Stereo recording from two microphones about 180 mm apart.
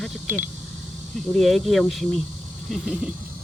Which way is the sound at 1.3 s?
Centre (ahead or behind).